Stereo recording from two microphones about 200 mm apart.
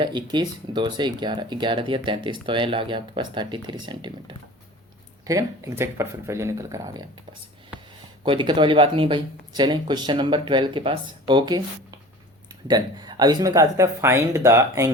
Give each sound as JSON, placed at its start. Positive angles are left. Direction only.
{"t": 0.0, "sound": "speech", "side_deg": -20}
{"t": 8.2, "sound": "speech", "side_deg": -25}